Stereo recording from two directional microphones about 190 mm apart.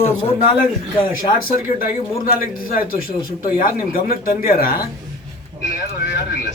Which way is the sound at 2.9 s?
50° left (ahead or behind).